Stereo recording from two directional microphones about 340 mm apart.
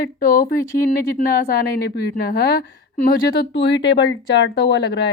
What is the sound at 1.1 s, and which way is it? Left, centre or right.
A woman's voice, left.